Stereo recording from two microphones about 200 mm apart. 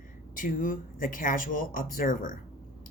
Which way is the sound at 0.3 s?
45° left (ahead or behind).